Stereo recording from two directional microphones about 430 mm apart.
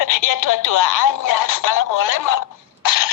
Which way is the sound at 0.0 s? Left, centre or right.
Left.